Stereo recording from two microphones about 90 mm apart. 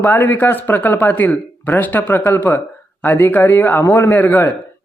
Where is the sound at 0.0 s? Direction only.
25° left (ahead or behind).